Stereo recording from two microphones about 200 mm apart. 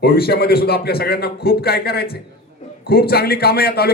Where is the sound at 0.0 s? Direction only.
50° left (ahead or behind).